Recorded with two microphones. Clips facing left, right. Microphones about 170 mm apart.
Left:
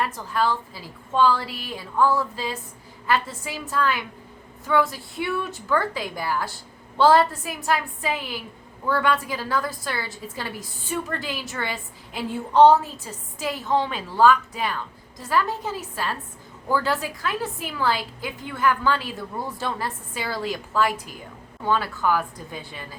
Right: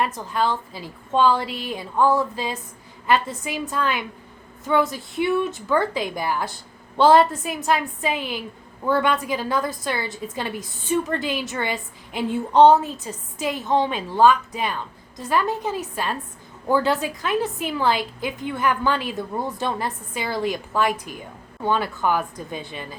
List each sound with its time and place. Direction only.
0.0 s a woman's voice: 20° right (ahead or behind)